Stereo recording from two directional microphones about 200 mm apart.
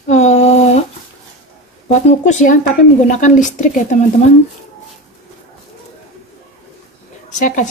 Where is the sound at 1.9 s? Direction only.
35° left (ahead or behind).